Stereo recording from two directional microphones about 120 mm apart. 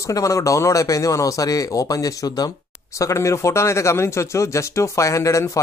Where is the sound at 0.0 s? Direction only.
25° left (ahead or behind).